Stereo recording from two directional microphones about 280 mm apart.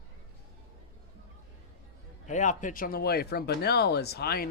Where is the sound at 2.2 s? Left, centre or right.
Left.